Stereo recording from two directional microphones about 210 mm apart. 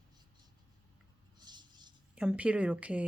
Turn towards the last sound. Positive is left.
turn(degrees=-5)  # may be behind; listen again after turning